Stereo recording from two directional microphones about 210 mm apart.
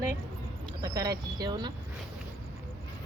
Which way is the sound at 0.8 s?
15° right (ahead or behind).